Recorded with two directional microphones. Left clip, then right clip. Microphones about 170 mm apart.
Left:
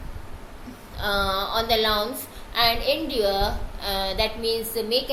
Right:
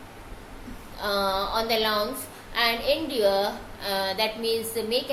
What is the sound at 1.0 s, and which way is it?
A woman's voice, 15° left (ahead or behind).